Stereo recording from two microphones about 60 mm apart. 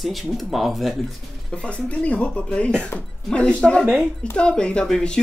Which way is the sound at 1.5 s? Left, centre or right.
Left.